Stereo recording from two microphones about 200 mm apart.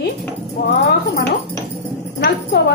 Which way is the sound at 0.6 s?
50° left (ahead or behind).